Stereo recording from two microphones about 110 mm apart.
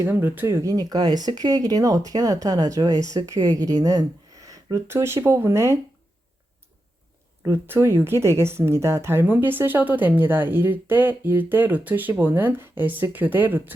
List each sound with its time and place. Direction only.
0.0 s speech: 20° right (ahead or behind)
7.4 s speech: 25° right (ahead or behind)